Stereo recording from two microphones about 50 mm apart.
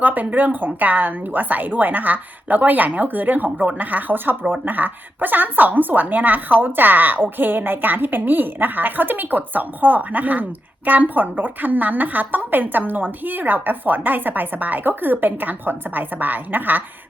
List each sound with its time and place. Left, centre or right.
0.0 s a woman's voice: right